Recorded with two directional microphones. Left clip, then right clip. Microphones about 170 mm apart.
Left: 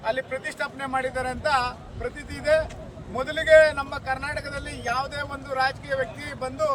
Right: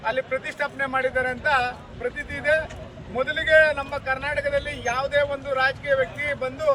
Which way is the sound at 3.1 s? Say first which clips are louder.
Left 1 dB; 15° left (ahead or behind).